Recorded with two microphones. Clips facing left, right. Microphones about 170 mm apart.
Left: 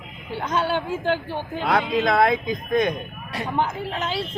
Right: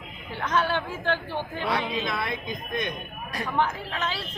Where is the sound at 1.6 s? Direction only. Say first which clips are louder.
Left 9 dB; 85° left.